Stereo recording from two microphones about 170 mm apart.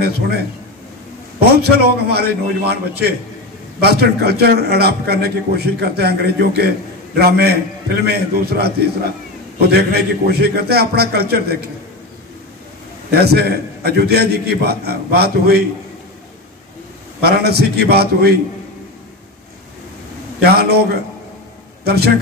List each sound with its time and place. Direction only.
1.4 s a man's voice: 70° right (ahead or behind)
13.1 s a man's voice: 70° right (ahead or behind)
17.2 s a man's voice: 70° right (ahead or behind)
20.4 s a man's voice: 70° right (ahead or behind)